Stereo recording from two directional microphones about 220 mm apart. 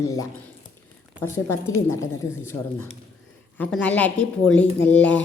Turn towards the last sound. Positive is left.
turn(degrees=5)  # may be behind; listen again after turning